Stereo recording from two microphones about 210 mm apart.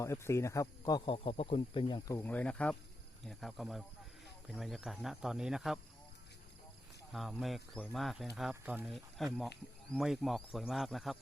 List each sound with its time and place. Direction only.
0.0 s speech: 15° left (ahead or behind); by 5.8 s centre (ahead or behind)
7.1 s speech: centre (ahead or behind)